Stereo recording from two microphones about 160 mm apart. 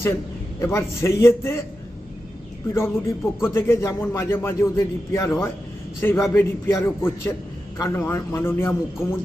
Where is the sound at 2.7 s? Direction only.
15° left (ahead or behind).